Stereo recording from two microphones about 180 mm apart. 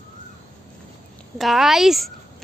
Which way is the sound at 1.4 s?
Centre (ahead or behind).